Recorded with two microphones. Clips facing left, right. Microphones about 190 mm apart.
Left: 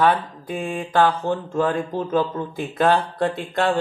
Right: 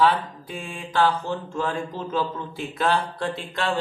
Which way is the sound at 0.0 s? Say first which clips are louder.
Left 2 dB; 55° left (ahead or behind).